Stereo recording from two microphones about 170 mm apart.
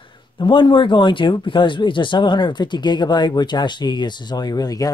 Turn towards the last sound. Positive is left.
turn(degrees=20)  # may be behind; listen again after turning